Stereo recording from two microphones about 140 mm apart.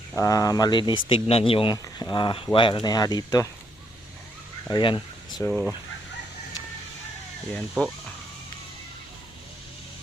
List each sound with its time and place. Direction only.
0.2 s speech: 25° left (ahead or behind); by 1.7 s 40° left (ahead or behind)
1.7 s speech: 30° left (ahead or behind)
4.7 s speech: 35° left (ahead or behind)
5.5 s fowl: 5° left (ahead or behind)
7.5 s speech: 5° left (ahead or behind)